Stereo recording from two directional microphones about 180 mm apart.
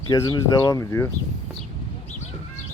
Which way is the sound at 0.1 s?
20° left (ahead or behind).